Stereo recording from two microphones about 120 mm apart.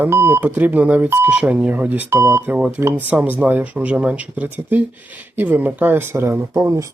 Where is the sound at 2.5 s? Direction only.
15° right (ahead or behind).